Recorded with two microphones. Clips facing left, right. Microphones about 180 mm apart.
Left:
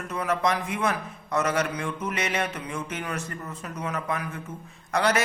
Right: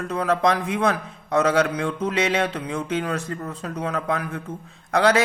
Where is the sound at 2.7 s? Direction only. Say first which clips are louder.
Right 7 dB; 75° right (ahead or behind).